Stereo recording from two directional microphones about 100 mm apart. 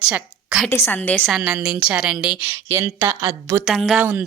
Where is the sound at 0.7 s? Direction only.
20° left (ahead or behind).